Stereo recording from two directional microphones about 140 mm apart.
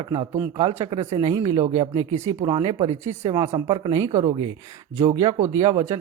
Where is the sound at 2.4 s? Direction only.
35° right (ahead or behind).